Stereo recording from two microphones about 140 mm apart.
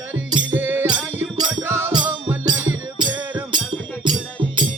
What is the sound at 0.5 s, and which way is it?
Music, 15° right (ahead or behind).